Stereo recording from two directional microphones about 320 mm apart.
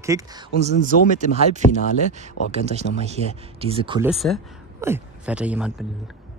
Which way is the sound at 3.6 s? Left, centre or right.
Centre.